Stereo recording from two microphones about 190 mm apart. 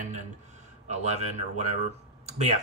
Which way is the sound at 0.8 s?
35° right (ahead or behind).